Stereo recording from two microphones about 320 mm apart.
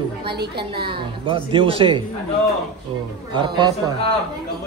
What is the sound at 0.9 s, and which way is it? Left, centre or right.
A man's voice, centre.